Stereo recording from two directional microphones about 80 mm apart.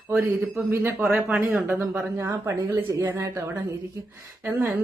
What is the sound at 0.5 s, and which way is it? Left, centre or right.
Speech, right.